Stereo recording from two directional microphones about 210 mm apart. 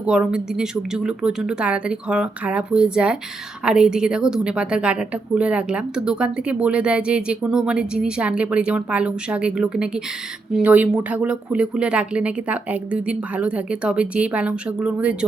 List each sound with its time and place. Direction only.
0.0 s a woman's voice: 5° right (ahead or behind)